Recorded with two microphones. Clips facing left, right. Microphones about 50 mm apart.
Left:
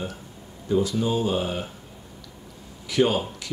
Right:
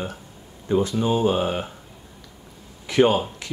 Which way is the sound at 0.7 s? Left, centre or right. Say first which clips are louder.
Right 2 dB; right.